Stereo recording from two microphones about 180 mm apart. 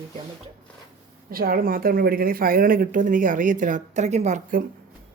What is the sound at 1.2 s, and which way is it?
Speech, 55° right (ahead or behind).